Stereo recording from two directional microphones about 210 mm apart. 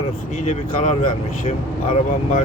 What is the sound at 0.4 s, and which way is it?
Speech, 35° left (ahead or behind).